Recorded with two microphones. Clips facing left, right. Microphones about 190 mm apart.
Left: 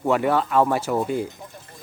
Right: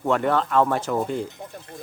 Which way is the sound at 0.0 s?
5° left (ahead or behind).